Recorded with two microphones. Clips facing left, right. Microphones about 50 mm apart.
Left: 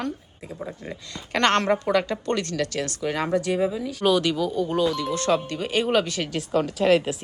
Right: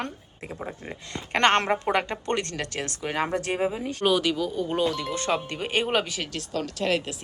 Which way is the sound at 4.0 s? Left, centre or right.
Centre.